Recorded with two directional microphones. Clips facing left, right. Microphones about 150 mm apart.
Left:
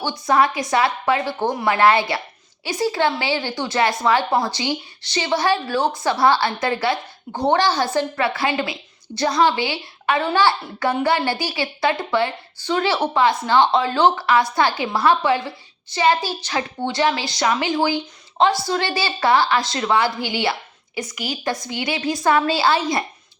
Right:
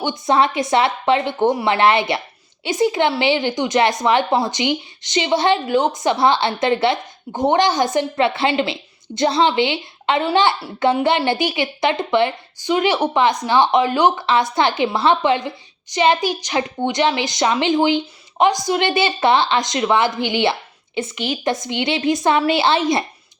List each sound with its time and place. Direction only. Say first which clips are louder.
0.0 s a woman's voice: right 1 dB; 20° right (ahead or behind)